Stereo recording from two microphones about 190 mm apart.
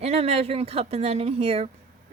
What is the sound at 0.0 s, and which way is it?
A woman's voice, 35° right (ahead or behind).